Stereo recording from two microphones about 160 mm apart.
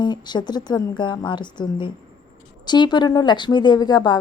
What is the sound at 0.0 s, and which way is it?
A woman's voice, 25° left (ahead or behind).